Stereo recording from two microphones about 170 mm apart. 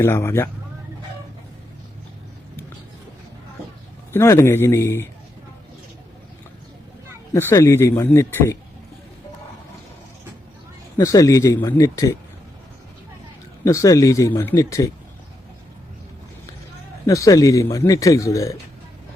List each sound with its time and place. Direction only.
0.0 s speech: 15° left (ahead or behind)
4.1 s speech: 15° left (ahead or behind)
7.3 s speech: 15° left (ahead or behind)
10.9 s speech: 20° left (ahead or behind)
13.7 s speech: 20° left (ahead or behind)
17.1 s speech: 20° left (ahead or behind)